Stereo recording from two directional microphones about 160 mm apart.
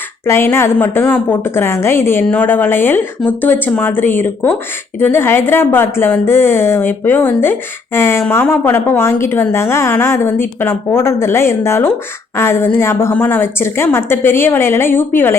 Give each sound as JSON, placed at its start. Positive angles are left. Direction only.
{"t": 0.3, "sound": "a woman's voice", "side_deg": 15}
{"t": 7.9, "sound": "a sound", "side_deg": 15}
{"t": 8.3, "sound": "a woman's voice", "side_deg": 15}